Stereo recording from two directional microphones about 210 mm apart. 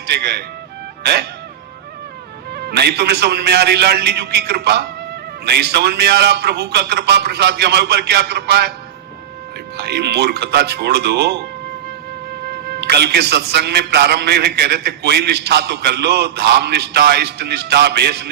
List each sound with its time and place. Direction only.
0.1 s a man's voice: 50° right (ahead or behind)
2.5 s a man's voice: 50° right (ahead or behind)
9.7 s a man's voice: 50° right (ahead or behind)
12.8 s a man's voice: 50° right (ahead or behind)